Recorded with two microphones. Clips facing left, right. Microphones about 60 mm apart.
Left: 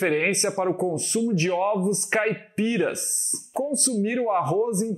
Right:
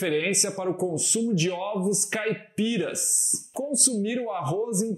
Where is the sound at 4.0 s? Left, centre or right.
Left.